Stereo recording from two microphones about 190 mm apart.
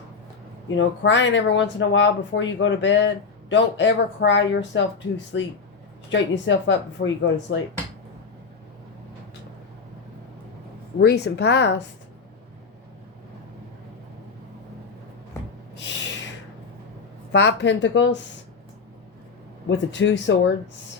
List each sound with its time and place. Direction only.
0.8 s speech: 75° left (ahead or behind)
11.0 s speech: 60° left (ahead or behind)
15.7 s a sound: 65° left (ahead or behind)
17.3 s speech: 65° left (ahead or behind)
19.6 s speech: 70° left (ahead or behind)